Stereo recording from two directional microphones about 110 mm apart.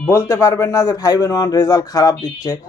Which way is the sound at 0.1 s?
25° left (ahead or behind).